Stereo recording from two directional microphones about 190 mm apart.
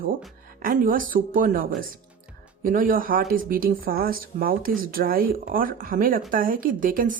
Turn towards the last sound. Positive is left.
turn(degrees=-45)  # may be behind; listen again after turning